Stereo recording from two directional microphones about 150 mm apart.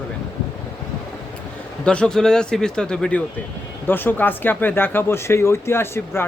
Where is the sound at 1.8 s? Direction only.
5° left (ahead or behind).